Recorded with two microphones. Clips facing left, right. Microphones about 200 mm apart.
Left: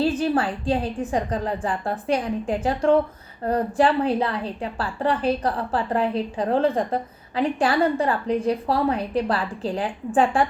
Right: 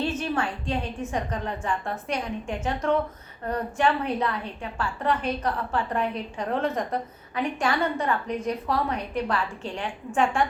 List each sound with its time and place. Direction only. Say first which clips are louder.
0.0 s a woman's voice: left 6 dB; 35° left (ahead or behind)